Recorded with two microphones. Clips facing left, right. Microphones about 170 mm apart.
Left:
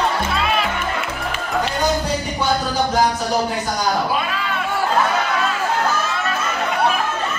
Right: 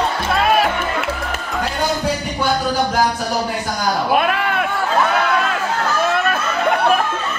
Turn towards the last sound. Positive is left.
turn(degrees=-55)  # may be behind; listen again after turning